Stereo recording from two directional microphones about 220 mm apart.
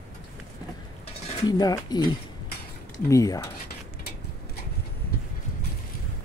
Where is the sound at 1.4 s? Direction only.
15° left (ahead or behind).